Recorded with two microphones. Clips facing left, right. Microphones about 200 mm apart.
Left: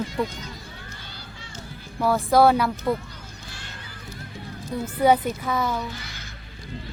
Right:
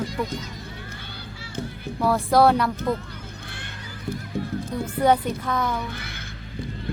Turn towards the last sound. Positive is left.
turn(degrees=-55)  # may be behind; listen again after turning